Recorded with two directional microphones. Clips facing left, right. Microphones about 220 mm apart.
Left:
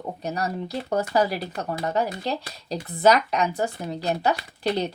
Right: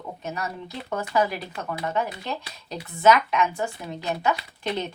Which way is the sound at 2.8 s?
35° left (ahead or behind).